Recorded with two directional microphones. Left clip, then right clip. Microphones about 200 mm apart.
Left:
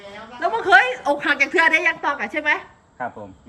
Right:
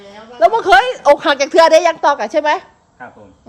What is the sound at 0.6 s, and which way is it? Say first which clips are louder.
A woman's voice: right 5 dB; 25° right (ahead or behind).